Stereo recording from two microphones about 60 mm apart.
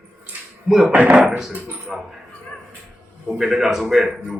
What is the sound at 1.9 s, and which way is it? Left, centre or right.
Speech, centre.